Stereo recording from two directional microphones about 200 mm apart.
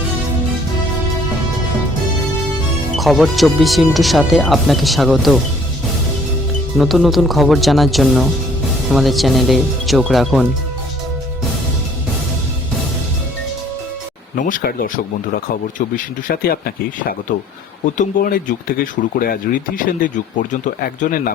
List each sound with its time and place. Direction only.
2.9 s speech: centre (ahead or behind)
6.7 s speech: centre (ahead or behind)
14.3 s speech: 40° left (ahead or behind)
16.2 s speech: 45° left (ahead or behind)